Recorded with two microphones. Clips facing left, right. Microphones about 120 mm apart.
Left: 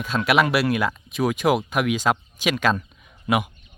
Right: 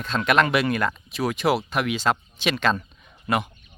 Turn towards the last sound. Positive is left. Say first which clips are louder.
# left 2 dB
turn(degrees=0)  # may be behind; listen again after turning